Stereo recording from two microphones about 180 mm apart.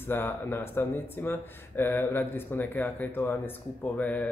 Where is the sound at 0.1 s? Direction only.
10° left (ahead or behind).